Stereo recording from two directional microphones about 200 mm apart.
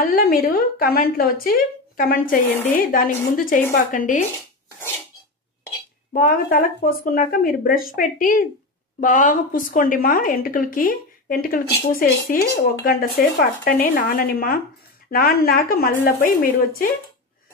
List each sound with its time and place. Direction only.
0.0 s a woman's voice: 45° left (ahead or behind)
6.1 s speech: 45° left (ahead or behind)